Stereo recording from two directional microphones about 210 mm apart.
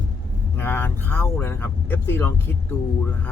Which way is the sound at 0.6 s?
10° left (ahead or behind).